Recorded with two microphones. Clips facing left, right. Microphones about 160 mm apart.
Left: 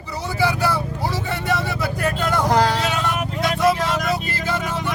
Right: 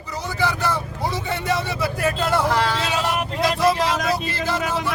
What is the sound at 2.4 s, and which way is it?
Speech, 40° left (ahead or behind).